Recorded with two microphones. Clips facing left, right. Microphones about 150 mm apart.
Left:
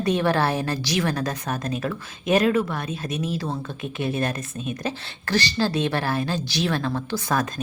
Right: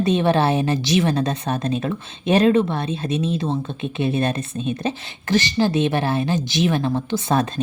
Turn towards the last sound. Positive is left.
turn(degrees=-25)  # may be behind; listen again after turning